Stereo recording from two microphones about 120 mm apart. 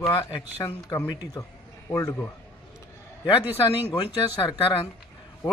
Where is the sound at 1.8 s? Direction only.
25° left (ahead or behind).